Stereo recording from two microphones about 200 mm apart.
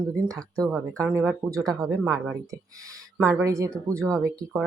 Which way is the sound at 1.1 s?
10° right (ahead or behind).